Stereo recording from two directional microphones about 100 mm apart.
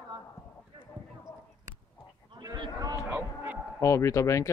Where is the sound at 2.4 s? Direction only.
40° right (ahead or behind).